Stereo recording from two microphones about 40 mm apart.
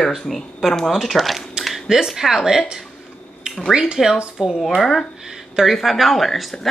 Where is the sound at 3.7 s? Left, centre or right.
Centre.